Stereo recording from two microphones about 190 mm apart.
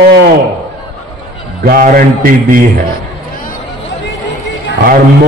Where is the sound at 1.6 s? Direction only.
50° right (ahead or behind).